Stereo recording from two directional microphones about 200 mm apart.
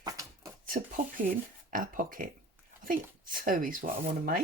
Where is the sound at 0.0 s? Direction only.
15° right (ahead or behind).